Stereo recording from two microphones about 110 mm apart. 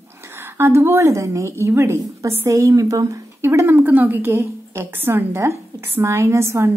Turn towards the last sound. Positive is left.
turn(degrees=-25)  # may be behind; listen again after turning